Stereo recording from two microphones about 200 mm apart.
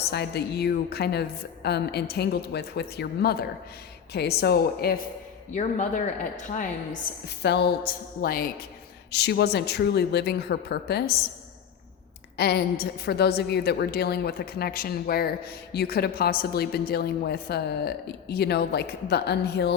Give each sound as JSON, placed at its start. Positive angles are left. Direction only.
{"t": 0.0, "sound": "a woman's voice", "side_deg": 55}
{"t": 5.5, "sound": "speech", "side_deg": 35}
{"t": 7.3, "sound": "a woman's voice", "side_deg": 55}
{"t": 12.4, "sound": "a woman's voice", "side_deg": 55}